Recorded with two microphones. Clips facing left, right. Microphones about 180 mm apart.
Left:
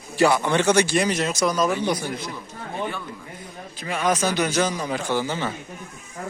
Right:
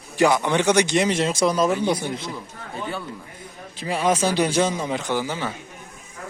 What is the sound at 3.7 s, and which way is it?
Speech, 30° right (ahead or behind).